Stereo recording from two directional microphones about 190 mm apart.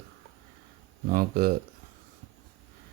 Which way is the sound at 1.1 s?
50° right (ahead or behind).